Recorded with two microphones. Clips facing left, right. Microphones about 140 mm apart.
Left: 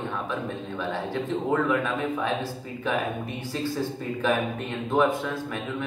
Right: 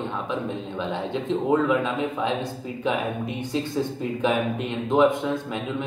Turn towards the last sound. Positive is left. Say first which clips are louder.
# right 4 dB
turn(degrees=-20)  # may be behind; listen again after turning